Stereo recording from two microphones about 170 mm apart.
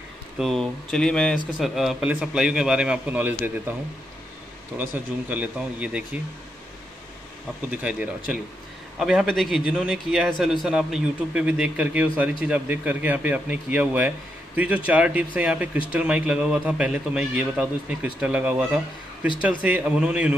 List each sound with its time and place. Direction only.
0.4 s a man's voice: centre (ahead or behind)
4.7 s a man's voice: 10° right (ahead or behind)
7.7 s a man's voice: 10° right (ahead or behind)